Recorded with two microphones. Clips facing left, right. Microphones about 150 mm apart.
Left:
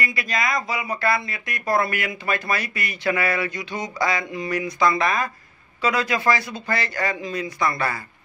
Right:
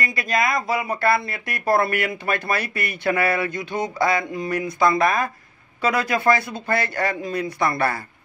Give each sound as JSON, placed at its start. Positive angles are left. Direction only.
{"t": 0.0, "sound": "speech", "side_deg": -45}